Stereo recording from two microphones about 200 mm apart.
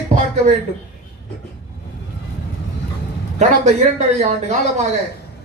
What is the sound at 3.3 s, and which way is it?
Speech, 35° right (ahead or behind).